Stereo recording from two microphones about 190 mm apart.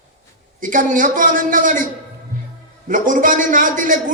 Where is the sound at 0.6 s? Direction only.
45° right (ahead or behind).